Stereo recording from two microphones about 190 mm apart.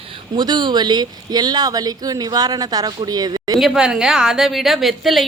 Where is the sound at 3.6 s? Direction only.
5° right (ahead or behind).